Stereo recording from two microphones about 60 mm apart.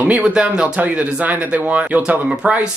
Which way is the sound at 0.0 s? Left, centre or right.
Right.